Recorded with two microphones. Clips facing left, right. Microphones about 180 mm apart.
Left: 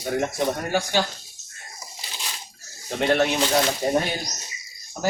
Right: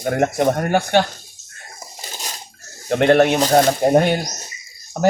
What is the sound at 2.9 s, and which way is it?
Speech, 60° right (ahead or behind).